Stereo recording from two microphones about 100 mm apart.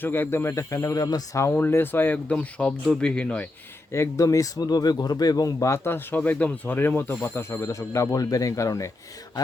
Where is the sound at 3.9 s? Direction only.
30° left (ahead or behind).